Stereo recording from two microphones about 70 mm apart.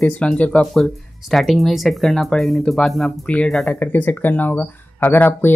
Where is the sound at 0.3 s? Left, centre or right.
Centre.